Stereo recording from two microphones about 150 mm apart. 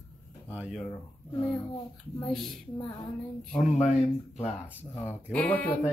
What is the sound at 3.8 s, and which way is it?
Speech, 50° left (ahead or behind).